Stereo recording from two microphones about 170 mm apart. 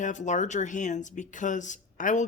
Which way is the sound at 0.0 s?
45° left (ahead or behind).